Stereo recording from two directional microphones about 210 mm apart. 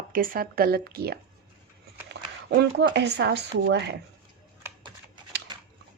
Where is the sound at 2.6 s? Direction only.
55° right (ahead or behind).